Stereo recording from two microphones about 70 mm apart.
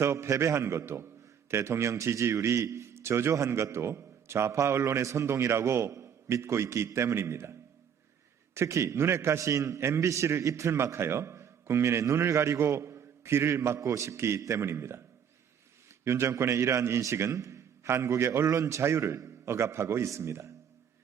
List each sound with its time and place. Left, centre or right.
0.0 s a man's voice: right
8.5 s a man's voice: right
16.0 s a man's voice: right